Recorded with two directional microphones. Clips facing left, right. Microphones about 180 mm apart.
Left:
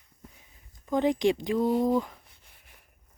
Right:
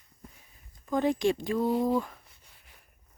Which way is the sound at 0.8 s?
15° left (ahead or behind).